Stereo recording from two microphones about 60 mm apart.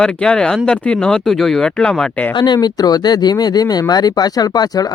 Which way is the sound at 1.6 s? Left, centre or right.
Centre.